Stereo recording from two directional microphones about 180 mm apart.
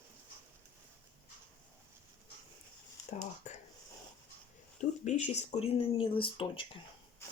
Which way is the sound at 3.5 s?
45° left (ahead or behind).